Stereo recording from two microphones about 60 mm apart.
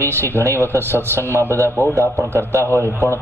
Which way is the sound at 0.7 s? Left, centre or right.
Right.